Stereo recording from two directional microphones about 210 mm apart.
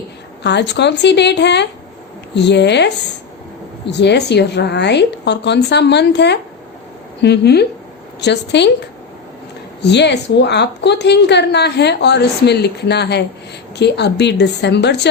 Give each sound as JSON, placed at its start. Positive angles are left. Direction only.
{"t": 0.4, "sound": "a woman's voice", "side_deg": 55}
{"t": 9.8, "sound": "a woman's voice", "side_deg": 55}